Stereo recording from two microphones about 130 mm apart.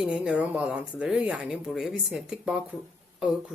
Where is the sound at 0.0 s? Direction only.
10° right (ahead or behind).